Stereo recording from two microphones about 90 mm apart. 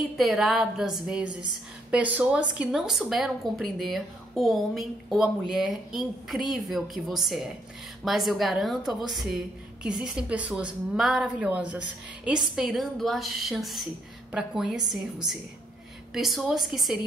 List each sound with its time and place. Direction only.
0.2 s a woman's voice: centre (ahead or behind)
11.3 s a woman's voice: 15° right (ahead or behind)
12.5 s a woman's voice: centre (ahead or behind)